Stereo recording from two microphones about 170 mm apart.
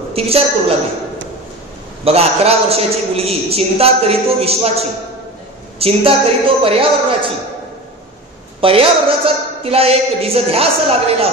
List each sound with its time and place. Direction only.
0.1 s a man's voice: 35° right (ahead or behind)
2.0 s a man's voice: 35° right (ahead or behind)
8.5 s a man's voice: 35° right (ahead or behind)